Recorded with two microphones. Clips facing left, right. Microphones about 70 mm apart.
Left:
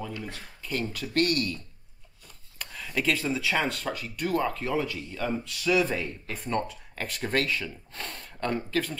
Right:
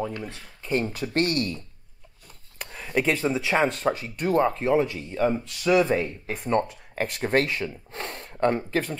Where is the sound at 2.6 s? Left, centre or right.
Right.